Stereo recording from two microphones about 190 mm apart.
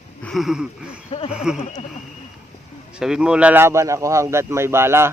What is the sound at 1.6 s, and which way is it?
Speech, 35° left (ahead or behind).